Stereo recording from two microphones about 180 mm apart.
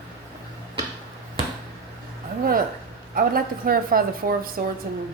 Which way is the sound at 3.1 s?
55° right (ahead or behind).